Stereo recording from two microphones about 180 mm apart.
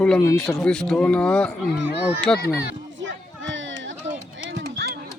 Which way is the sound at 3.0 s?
90° right.